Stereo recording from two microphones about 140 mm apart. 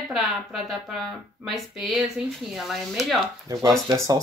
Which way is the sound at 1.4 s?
Centre (ahead or behind).